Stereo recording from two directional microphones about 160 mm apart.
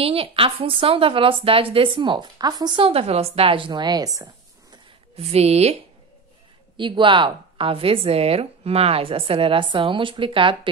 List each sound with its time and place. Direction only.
0.0 s a woman's voice: 35° right (ahead or behind)
5.1 s a woman's voice: 40° right (ahead or behind)
6.8 s a woman's voice: 30° right (ahead or behind)